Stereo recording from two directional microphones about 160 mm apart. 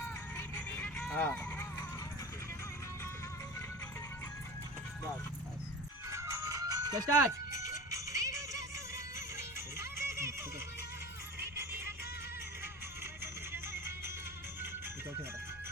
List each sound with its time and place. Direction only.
0.3 s music: 10° left (ahead or behind)
6.1 s music: 20° right (ahead or behind)
13.5 s music: 15° right (ahead or behind)